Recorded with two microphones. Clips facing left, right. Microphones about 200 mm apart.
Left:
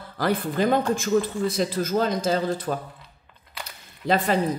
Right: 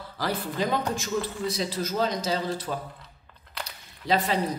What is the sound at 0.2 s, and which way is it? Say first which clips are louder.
Speech: left 5 dB; 55° left (ahead or behind).